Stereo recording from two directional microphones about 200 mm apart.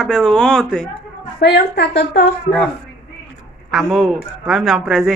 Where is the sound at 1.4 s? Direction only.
55° left (ahead or behind).